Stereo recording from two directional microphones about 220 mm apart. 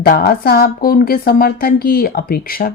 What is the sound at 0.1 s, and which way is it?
A woman's voice, 45° left (ahead or behind).